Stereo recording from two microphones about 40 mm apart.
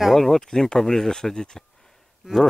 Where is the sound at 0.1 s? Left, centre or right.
Centre.